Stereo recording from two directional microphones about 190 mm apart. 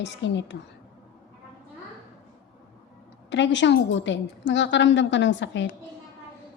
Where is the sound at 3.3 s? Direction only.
70° left (ahead or behind).